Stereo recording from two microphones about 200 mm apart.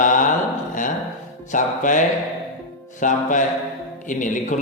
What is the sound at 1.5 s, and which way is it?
Speech, 40° left (ahead or behind).